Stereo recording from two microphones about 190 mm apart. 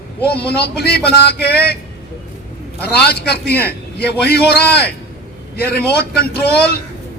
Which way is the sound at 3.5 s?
10° left (ahead or behind).